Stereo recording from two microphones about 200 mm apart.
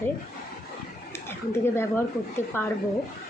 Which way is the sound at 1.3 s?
10° left (ahead or behind).